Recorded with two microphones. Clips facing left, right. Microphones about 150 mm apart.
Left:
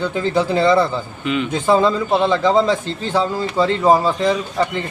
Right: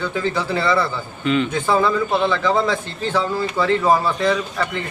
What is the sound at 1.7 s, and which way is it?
Speech, 25° left (ahead or behind).